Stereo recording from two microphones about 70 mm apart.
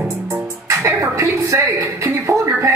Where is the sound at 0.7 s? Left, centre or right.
Right.